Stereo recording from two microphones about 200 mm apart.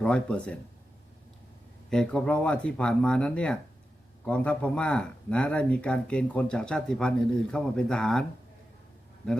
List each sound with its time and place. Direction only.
0.0 s speech: 5° left (ahead or behind)
1.9 s speech: 5° left (ahead or behind)